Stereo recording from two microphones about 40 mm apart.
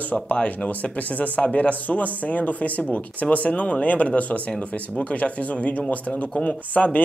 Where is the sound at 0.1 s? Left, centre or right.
Left.